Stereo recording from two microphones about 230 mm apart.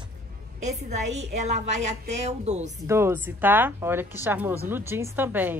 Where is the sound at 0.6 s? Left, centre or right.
Right.